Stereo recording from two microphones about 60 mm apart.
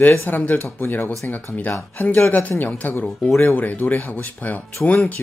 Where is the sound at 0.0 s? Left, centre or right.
Left.